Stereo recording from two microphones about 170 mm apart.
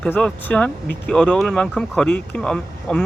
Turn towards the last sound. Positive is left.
turn(degrees=5)  # may be behind; listen again after turning